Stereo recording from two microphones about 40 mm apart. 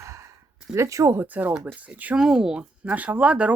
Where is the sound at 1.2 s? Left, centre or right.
Right.